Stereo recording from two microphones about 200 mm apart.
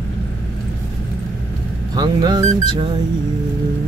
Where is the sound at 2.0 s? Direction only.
20° right (ahead or behind).